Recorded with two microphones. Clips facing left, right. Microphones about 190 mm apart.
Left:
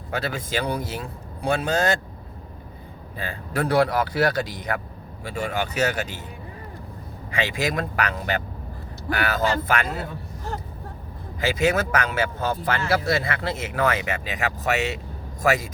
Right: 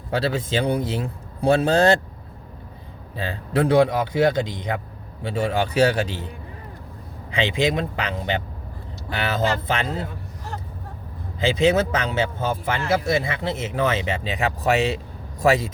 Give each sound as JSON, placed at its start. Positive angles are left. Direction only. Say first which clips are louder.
{"t": 0.1, "sound": "speech", "louder": "right 5 dB", "side_deg": -30}
{"t": 3.2, "sound": "speech", "louder": "right 5 dB", "side_deg": -25}
{"t": 7.4, "sound": "speech", "louder": "right 5 dB", "side_deg": -25}
{"t": 11.3, "sound": "speech", "louder": "right 3 dB", "side_deg": -25}